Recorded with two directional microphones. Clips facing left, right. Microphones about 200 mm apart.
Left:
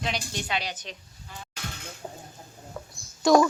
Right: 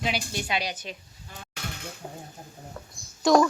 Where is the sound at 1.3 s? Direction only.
45° right (ahead or behind).